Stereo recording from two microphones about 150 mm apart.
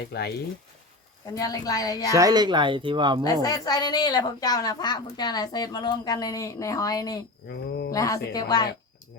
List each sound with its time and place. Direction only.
0.1 s speech: 90° left
1.3 s a woman's voice: 25° left (ahead or behind)
2.1 s speech: 25° right (ahead or behind)
3.2 s a woman's voice: 25° left (ahead or behind)